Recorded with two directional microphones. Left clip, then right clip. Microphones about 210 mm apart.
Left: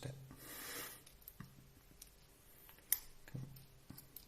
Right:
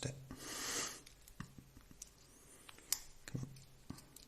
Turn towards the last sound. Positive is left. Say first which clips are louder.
# right 5 dB
turn(degrees=-35)  # may be behind; listen again after turning